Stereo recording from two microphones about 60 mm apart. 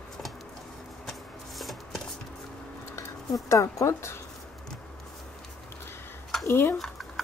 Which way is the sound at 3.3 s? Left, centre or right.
Left.